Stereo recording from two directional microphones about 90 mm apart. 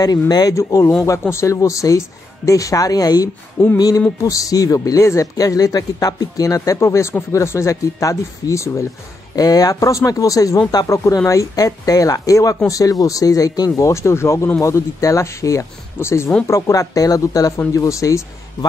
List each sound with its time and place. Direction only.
0.0 s speech: 45° left (ahead or behind)
0.6 s speech: 35° left (ahead or behind)